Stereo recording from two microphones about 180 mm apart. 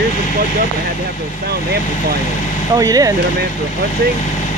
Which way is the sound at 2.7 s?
20° right (ahead or behind).